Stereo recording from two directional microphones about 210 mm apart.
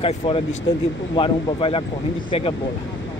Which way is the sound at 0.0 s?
25° left (ahead or behind).